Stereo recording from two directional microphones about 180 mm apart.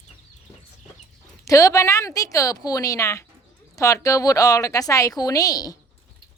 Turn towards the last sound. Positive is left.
turn(degrees=20)  # may be behind; listen again after turning